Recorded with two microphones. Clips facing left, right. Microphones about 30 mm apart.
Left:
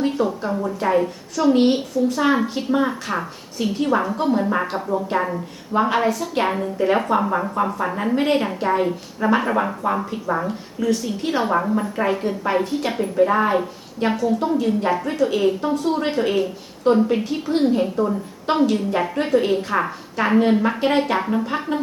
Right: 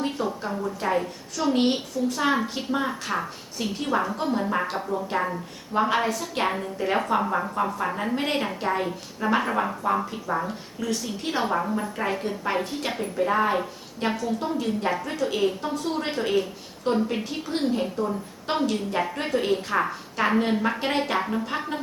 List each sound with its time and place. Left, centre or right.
0.3 s a woman's voice: centre
0.8 s a woman's voice: centre
10.8 s a woman's voice: centre